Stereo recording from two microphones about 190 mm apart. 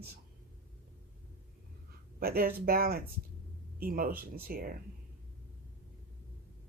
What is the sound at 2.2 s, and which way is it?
Speech, 50° right (ahead or behind).